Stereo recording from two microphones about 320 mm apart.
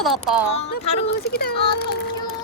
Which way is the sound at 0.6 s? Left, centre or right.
Left.